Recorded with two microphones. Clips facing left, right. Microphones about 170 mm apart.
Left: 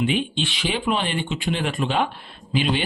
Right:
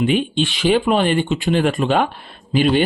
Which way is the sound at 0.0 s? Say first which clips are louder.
Right 5 dB; 50° right (ahead or behind).